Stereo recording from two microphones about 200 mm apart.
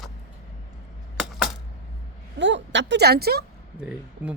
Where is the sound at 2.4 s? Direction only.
65° right (ahead or behind).